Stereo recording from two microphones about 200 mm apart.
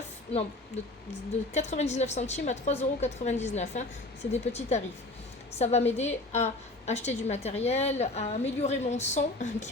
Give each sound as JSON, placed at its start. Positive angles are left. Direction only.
{"t": 0.3, "sound": "a woman's voice", "side_deg": 30}